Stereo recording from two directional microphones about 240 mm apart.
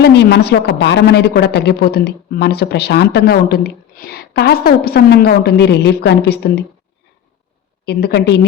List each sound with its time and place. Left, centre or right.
0.0 s a woman's voice: left
7.9 s a woman's voice: left